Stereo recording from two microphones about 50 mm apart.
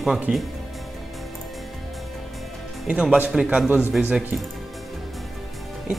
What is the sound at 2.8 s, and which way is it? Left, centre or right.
Speech, centre.